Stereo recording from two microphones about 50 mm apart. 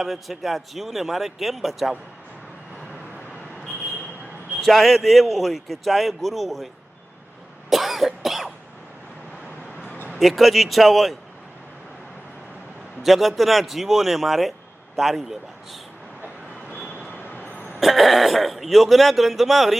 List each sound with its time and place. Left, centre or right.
0.0 s a man's voice: centre
4.6 s a man's voice: centre
7.7 s cough: centre
10.2 s a man's voice: centre
13.0 s a man's voice: centre
17.1 s train: left
17.7 s a man's voice: centre